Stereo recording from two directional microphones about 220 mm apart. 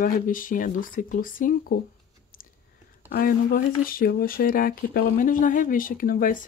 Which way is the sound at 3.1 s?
40° left (ahead or behind).